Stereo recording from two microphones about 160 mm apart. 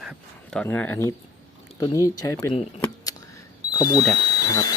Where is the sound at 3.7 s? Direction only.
25° left (ahead or behind).